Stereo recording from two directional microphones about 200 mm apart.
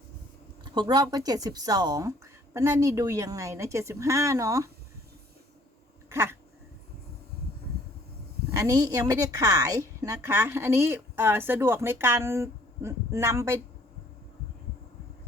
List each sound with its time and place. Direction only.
0.6 s a woman's voice: 20° right (ahead or behind)
6.1 s a sound: 15° right (ahead or behind)
8.4 s a woman's voice: 15° right (ahead or behind)